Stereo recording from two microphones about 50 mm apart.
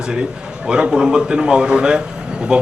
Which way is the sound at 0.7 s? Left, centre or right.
Centre.